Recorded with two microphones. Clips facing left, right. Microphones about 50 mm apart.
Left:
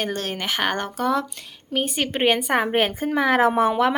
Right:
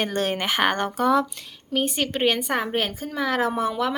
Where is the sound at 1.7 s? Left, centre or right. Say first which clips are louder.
Even; centre.